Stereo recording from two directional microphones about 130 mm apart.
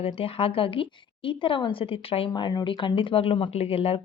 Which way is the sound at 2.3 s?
30° left (ahead or behind).